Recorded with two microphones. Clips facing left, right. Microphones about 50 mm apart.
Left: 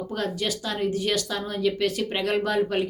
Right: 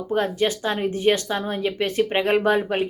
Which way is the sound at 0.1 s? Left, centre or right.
Right.